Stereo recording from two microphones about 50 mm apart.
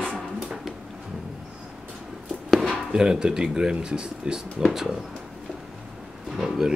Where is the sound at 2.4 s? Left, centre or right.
Centre.